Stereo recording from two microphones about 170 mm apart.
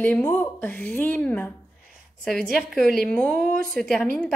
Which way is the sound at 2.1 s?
55° right (ahead or behind).